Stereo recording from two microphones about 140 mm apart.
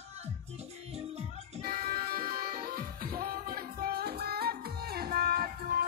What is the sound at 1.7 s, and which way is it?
Music, 90° right.